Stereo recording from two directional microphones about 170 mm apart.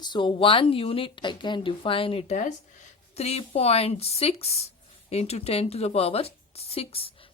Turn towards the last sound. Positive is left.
turn(degrees=35)  # may be behind; listen again after turning